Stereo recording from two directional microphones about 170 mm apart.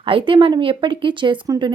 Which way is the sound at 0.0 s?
30° right (ahead or behind).